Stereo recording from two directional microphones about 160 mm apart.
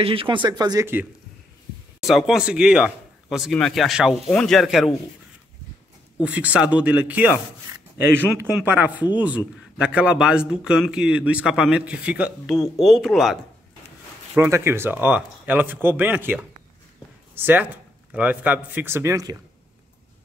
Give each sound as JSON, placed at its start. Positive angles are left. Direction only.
{"t": 0.0, "sound": "speech", "side_deg": -35}
{"t": 2.0, "sound": "speech", "side_deg": 0}
{"t": 6.2, "sound": "speech", "side_deg": -10}
{"t": 7.7, "sound": "a sound", "side_deg": -15}
{"t": 8.5, "sound": "speech", "side_deg": -10}
{"t": 14.3, "sound": "speech", "side_deg": -15}
{"t": 17.4, "sound": "speech", "side_deg": -10}